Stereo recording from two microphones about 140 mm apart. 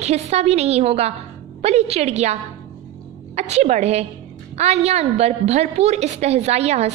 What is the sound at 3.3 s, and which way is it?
A woman's voice, 50° right (ahead or behind).